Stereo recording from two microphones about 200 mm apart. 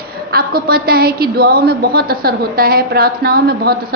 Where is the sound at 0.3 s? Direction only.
50° right (ahead or behind).